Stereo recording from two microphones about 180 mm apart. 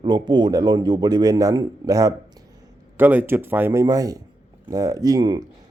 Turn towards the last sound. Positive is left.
turn(degrees=-20)  # may be behind; listen again after turning